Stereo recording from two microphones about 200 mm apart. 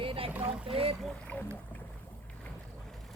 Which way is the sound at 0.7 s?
30° right (ahead or behind).